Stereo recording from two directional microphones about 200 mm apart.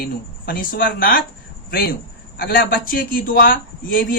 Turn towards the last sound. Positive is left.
turn(degrees=45)  # may be behind; listen again after turning